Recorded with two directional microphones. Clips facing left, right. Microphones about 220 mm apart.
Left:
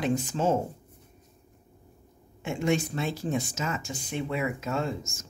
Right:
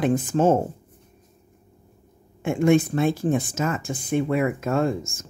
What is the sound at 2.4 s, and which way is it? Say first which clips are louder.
Speech: right 8 dB; 50° right (ahead or behind).